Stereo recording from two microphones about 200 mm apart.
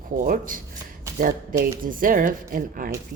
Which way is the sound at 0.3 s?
45° right (ahead or behind).